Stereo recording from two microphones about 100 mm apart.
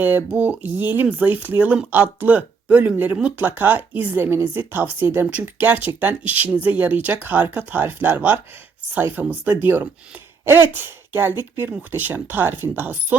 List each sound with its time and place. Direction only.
0.0 s speech: 20° right (ahead or behind)
10.4 s throat clearing: 20° right (ahead or behind)
11.1 s speech: 20° right (ahead or behind)